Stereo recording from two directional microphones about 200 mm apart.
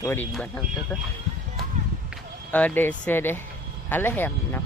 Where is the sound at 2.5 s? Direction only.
10° left (ahead or behind).